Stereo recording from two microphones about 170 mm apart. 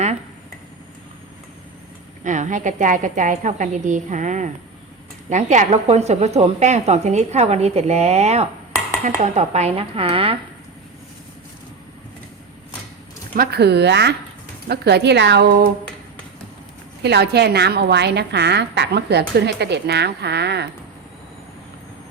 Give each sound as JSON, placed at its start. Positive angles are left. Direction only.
{"t": 2.2, "sound": "a woman's voice", "side_deg": -45}
{"t": 13.3, "sound": "a woman's voice", "side_deg": -65}
{"t": 17.0, "sound": "a woman's voice", "side_deg": -80}